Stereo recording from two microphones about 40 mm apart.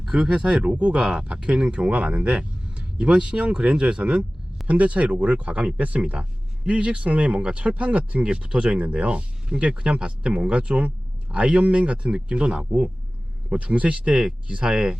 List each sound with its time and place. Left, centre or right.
0.0 s speech: centre
4.6 s speech: right